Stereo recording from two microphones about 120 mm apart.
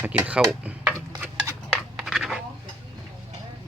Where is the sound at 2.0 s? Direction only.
5° right (ahead or behind).